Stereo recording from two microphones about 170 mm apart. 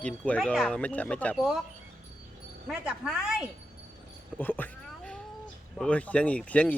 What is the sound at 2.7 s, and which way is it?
Speech, 5° right (ahead or behind).